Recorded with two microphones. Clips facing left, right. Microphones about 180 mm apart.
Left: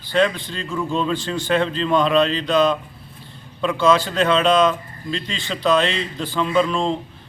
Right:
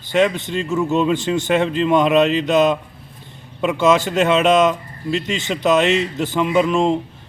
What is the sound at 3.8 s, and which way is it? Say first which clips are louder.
Speech: right 2 dB; 20° right (ahead or behind).